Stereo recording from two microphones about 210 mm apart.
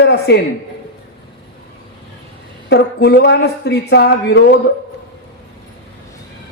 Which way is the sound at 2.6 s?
55° left (ahead or behind).